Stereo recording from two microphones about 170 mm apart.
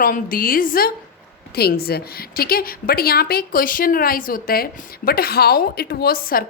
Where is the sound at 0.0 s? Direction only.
55° left (ahead or behind).